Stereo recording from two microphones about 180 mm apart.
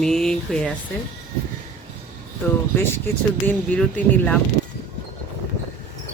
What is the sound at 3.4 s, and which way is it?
Speech, 10° left (ahead or behind).